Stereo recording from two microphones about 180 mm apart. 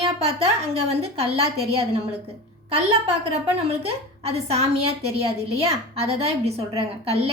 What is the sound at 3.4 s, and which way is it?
A woman's voice, 35° right (ahead or behind).